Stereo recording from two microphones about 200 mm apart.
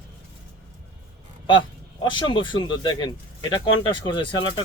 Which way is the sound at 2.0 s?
25° left (ahead or behind).